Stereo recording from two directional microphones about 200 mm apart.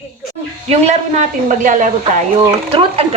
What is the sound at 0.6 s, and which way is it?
Speech, 35° right (ahead or behind).